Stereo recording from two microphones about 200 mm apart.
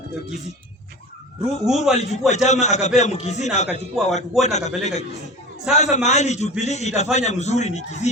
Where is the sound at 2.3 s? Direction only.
35° left (ahead or behind).